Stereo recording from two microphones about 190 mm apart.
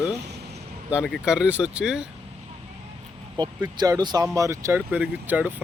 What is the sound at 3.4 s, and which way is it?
Speech, 25° right (ahead or behind).